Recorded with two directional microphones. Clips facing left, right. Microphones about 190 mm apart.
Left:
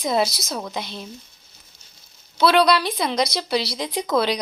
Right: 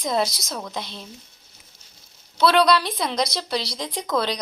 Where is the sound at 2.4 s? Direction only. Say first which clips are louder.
Left 1 dB; centre (ahead or behind).